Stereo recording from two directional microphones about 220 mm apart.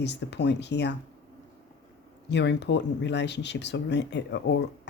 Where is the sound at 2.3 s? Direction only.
50° left (ahead or behind).